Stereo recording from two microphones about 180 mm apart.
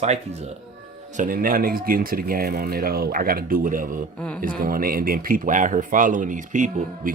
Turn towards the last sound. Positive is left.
turn(degrees=-45)  # may be behind; listen again after turning